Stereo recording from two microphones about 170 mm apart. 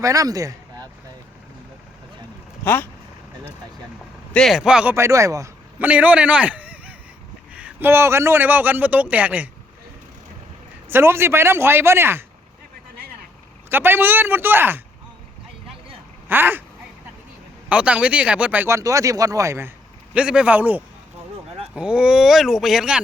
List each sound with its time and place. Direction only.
0.0 s a man's voice: 20° right (ahead or behind)
4.3 s speech: centre (ahead or behind)
4.9 s a man's voice: 15° right (ahead or behind)
10.8 s speech: 15° right (ahead or behind)
13.7 s speech: 10° right (ahead or behind)
16.3 s speech: 10° right (ahead or behind)
17.7 s speech: 5° right (ahead or behind)